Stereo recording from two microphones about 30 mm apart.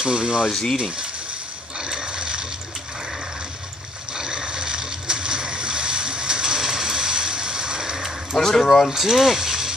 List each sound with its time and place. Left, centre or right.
0.0 s speech: right
1.9 s ratchet: right
4.2 s boat: right
8.4 s speech: centre
8.9 s speech: centre